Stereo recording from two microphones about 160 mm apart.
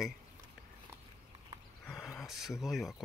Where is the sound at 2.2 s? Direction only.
Centre (ahead or behind).